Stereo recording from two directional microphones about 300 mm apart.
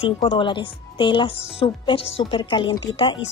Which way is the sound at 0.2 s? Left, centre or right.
Centre.